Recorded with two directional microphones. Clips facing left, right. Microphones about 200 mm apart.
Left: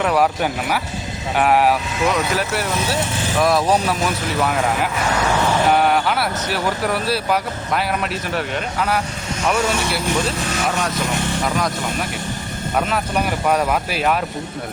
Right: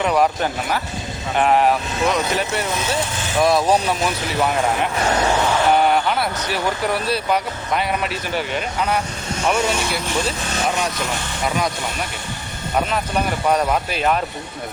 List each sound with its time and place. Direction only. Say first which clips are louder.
0.0 s speech: even; 5° left (ahead or behind)
5.7 s speech: even; centre (ahead or behind)
13.5 s speech: even; 5° left (ahead or behind)